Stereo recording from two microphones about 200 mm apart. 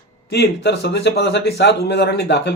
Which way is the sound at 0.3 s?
55° left (ahead or behind).